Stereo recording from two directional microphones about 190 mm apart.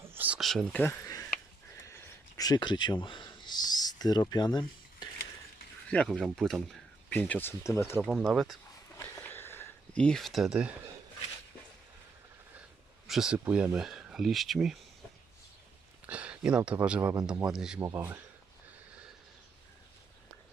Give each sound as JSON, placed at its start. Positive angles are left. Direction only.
{"t": 0.0, "sound": "a sound", "side_deg": -10}
{"t": 5.9, "sound": "speech", "side_deg": 5}
{"t": 8.1, "sound": "speech", "side_deg": 0}
{"t": 9.0, "sound": "a sound", "side_deg": 10}
{"t": 13.1, "sound": "speech", "side_deg": -5}
{"t": 16.0, "sound": "speech", "side_deg": -5}
{"t": 17.7, "sound": "speech", "side_deg": -15}